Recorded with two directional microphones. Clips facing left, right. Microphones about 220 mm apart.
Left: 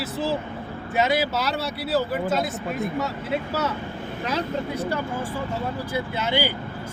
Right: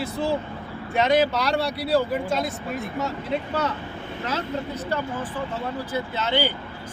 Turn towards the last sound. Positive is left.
turn(degrees=10)  # may be behind; listen again after turning